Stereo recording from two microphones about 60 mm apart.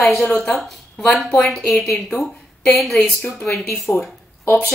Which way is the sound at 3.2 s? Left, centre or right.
Left.